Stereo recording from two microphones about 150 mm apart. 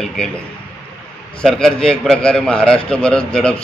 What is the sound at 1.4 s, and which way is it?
A man's voice, 5° left (ahead or behind).